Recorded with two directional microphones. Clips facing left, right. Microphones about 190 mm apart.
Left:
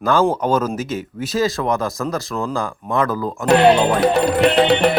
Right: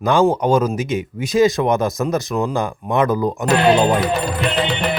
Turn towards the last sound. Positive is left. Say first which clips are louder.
# left 6 dB
turn(degrees=70)  # may be behind; listen again after turning